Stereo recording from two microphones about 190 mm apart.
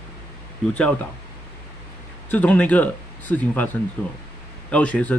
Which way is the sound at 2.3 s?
10° left (ahead or behind).